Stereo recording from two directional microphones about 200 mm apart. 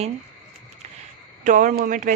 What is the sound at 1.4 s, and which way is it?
Speech, 40° right (ahead or behind).